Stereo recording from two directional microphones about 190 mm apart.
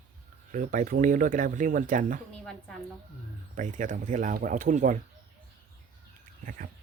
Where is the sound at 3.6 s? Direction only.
40° right (ahead or behind).